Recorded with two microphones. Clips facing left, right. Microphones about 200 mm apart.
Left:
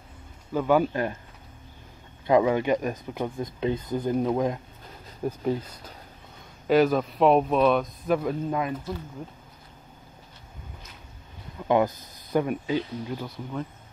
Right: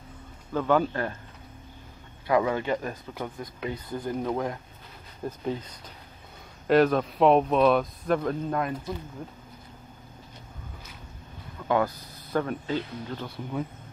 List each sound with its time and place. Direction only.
0.5 s speech: 10° left (ahead or behind)
2.2 s speech: 20° left (ahead or behind)
6.7 s speech: centre (ahead or behind)
11.6 s speech: 20° left (ahead or behind)